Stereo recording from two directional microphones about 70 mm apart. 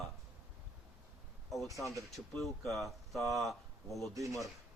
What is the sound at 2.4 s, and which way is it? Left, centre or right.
Speech, centre.